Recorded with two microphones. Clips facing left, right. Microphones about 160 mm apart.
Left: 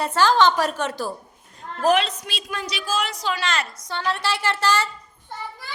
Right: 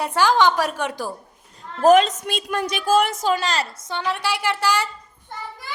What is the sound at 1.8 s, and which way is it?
A woman's voice, 45° right (ahead or behind).